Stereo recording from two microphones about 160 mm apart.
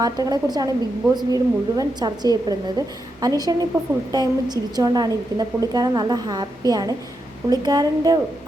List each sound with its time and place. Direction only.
0.0 s a woman's voice: 25° right (ahead or behind)